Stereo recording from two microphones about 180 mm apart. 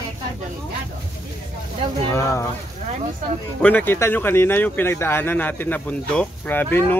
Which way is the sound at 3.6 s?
10° left (ahead or behind).